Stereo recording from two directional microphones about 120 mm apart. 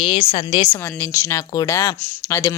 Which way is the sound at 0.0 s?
55° left (ahead or behind).